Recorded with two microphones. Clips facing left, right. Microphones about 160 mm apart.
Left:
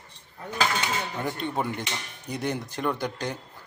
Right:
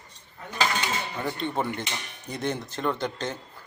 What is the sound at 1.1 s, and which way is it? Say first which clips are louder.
Speech: even; 10° left (ahead or behind).